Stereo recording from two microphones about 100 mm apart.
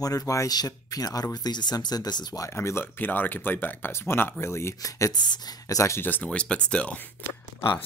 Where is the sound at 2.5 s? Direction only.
25° left (ahead or behind); by 7.0 s 10° left (ahead or behind).